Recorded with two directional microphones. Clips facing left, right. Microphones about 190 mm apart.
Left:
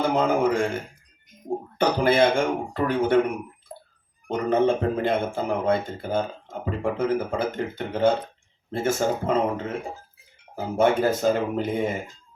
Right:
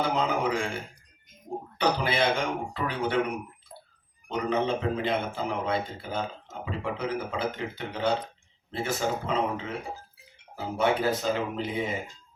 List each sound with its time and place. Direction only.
0.1 s speech: 50° left (ahead or behind)
1.8 s speech: 50° left (ahead or behind)
4.3 s speech: 50° left (ahead or behind)